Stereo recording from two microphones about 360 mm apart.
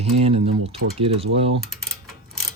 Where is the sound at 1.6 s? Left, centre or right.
Centre.